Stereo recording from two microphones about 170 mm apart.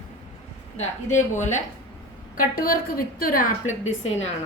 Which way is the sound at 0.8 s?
45° left (ahead or behind).